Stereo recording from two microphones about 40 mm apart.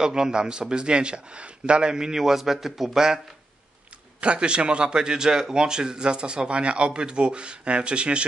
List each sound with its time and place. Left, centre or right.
0.0 s a man's voice: centre
4.2 s a man's voice: right